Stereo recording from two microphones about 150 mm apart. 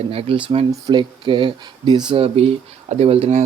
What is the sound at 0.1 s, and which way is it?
Speech, 40° right (ahead or behind).